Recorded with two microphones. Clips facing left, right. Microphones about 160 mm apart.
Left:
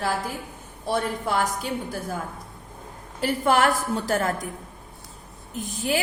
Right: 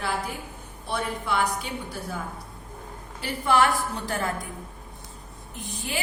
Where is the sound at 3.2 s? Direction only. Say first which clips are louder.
Left 2 dB; 45° left (ahead or behind).